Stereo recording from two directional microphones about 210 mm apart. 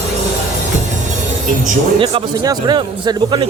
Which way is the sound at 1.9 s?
25° right (ahead or behind).